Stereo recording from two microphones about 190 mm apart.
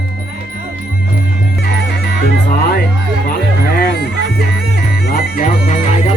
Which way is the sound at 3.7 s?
55° left (ahead or behind).